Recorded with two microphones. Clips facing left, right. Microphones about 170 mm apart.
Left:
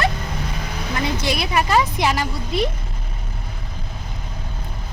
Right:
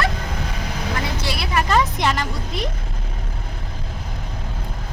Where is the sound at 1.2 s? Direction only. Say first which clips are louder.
Left 2 dB; 20° left (ahead or behind).